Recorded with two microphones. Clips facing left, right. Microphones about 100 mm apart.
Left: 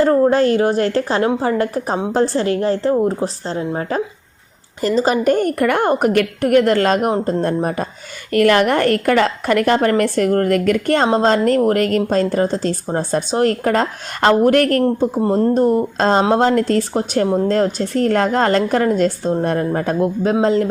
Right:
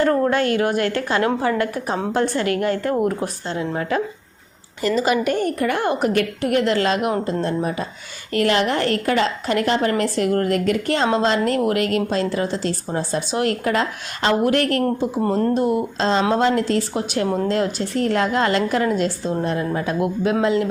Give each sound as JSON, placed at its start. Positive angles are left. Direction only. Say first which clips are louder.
{"t": 0.0, "sound": "a woman's voice", "louder": "left 5 dB", "side_deg": 25}
{"t": 13.3, "sound": "a woman's voice", "louder": "left 4 dB", "side_deg": 40}